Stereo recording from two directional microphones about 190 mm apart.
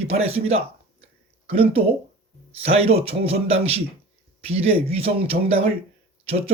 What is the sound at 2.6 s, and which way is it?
A man's voice, 30° right (ahead or behind).